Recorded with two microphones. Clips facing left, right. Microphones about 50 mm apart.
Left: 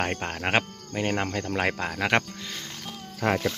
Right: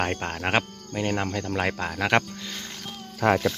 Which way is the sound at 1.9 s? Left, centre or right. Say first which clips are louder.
Right 2 dB; centre.